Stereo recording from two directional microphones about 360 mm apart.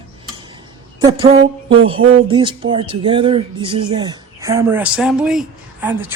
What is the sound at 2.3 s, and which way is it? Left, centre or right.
A man's voice, centre.